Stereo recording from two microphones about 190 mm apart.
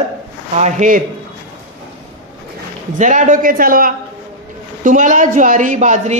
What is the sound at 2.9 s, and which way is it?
A man's voice, 40° right (ahead or behind).